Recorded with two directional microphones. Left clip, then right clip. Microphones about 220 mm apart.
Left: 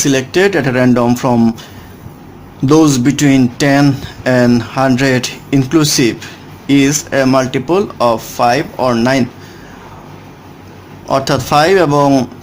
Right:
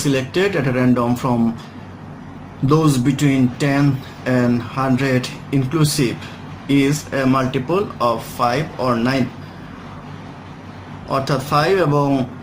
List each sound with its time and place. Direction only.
0.0 s speech: 50° left (ahead or behind)
2.6 s speech: 45° left (ahead or behind)
11.1 s speech: 50° left (ahead or behind)